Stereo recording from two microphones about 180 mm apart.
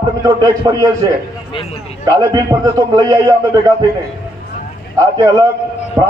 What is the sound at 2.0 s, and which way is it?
A man's voice, 20° right (ahead or behind).